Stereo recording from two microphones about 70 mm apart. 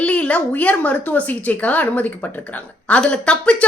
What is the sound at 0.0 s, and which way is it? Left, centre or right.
Speech, centre.